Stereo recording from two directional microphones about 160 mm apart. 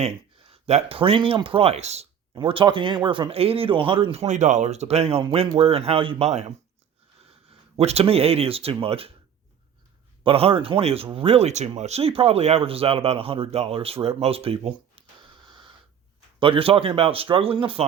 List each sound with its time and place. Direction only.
0.0 s speech: 40° right (ahead or behind)
7.8 s speech: 40° right (ahead or behind)
10.2 s speech: 35° right (ahead or behind)
16.4 s speech: 35° right (ahead or behind)